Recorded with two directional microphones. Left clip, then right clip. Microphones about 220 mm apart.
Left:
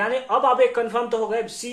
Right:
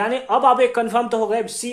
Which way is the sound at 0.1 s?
45° right (ahead or behind).